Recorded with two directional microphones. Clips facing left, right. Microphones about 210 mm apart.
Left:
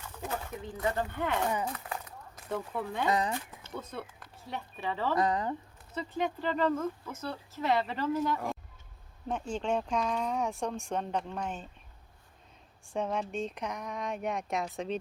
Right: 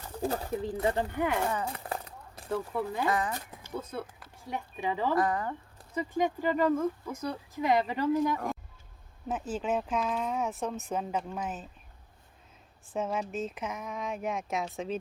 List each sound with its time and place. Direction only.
0.0 s speech: 35° right (ahead or behind)
1.1 s speech: 10° right (ahead or behind)
1.7 s a sound: 30° right (ahead or behind)
2.5 s speech: 5° right (ahead or behind)
3.1 s speech: 20° left (ahead or behind)
3.6 s speech: 5° right (ahead or behind)
5.1 s speech: 20° left (ahead or behind)
5.9 s speech: 10° right (ahead or behind)
12.9 s speech: 5° right (ahead or behind)